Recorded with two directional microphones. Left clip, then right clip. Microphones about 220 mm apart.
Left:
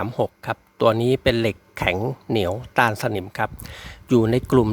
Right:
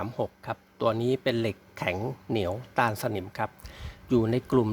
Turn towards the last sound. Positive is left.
turn(degrees=25)  # may be behind; listen again after turning